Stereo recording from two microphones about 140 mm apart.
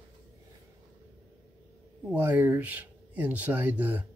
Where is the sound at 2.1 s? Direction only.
15° right (ahead or behind).